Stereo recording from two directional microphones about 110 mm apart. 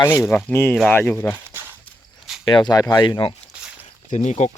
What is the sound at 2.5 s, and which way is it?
Speech, 40° left (ahead or behind).